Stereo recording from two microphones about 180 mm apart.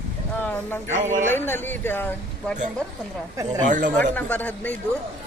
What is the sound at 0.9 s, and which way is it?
Speech, 40° right (ahead or behind).